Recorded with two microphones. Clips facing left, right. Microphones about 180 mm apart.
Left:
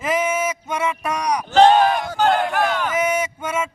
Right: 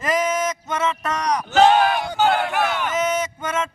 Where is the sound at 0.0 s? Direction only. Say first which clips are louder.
Even; 5° left (ahead or behind).